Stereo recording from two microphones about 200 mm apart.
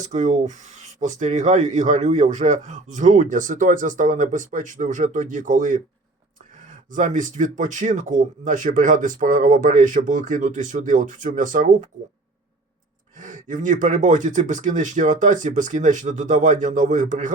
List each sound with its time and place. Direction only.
0.0 s speech: 35° right (ahead or behind)
6.9 s speech: 40° right (ahead or behind)
13.1 s speech: 40° right (ahead or behind)